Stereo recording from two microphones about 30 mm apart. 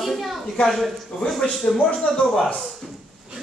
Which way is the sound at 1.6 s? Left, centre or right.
Centre.